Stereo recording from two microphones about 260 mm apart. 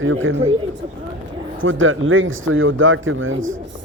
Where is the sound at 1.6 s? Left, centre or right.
Right.